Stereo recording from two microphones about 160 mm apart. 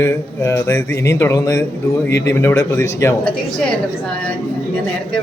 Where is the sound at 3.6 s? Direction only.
5° left (ahead or behind).